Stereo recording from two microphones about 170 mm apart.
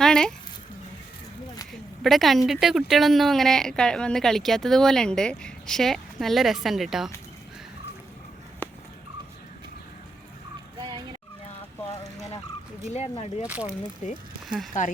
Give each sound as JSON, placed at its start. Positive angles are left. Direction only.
{"t": 0.0, "sound": "a sound", "side_deg": 5}
{"t": 2.0, "sound": "a woman's voice", "side_deg": 0}
{"t": 8.6, "sound": "a sound", "side_deg": 15}
{"t": 10.8, "sound": "vehicle", "side_deg": -25}
{"t": 12.9, "sound": "speech", "side_deg": 40}
{"t": 13.5, "sound": "speech", "side_deg": -5}
{"t": 14.7, "sound": "speech", "side_deg": 45}